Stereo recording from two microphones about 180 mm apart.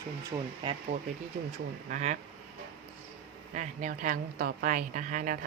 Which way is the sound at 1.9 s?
40° right (ahead or behind).